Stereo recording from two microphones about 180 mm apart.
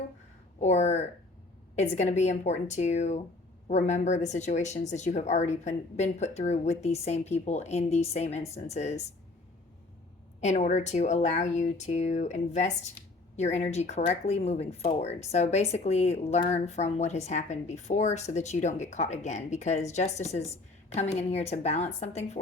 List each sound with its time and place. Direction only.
0.6 s a sound: 40° left (ahead or behind)
1.7 s speech: 40° left (ahead or behind)
10.4 s speech: 40° left (ahead or behind)